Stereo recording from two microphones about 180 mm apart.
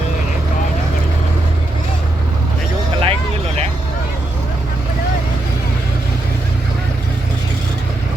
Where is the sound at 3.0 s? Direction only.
35° right (ahead or behind).